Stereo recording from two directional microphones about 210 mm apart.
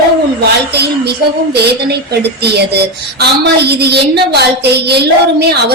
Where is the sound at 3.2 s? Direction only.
50° right (ahead or behind).